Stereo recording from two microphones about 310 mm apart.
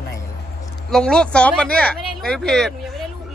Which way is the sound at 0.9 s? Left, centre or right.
Centre.